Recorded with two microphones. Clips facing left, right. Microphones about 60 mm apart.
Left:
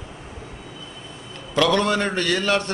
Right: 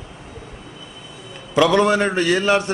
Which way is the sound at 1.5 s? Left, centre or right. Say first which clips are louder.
Right 4 dB; centre.